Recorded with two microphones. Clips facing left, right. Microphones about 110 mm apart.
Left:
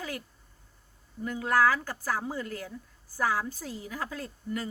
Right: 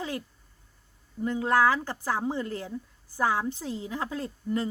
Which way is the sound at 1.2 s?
25° right (ahead or behind).